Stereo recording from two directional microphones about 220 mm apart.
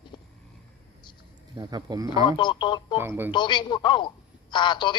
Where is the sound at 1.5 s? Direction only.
20° right (ahead or behind).